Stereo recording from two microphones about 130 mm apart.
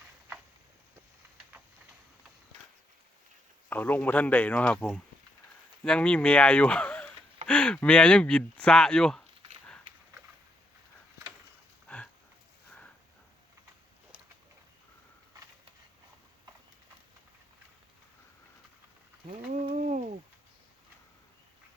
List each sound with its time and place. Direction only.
3.7 s speech: 15° left (ahead or behind)
11.9 s dog: 10° left (ahead or behind)
19.7 s a sound: 65° right (ahead or behind)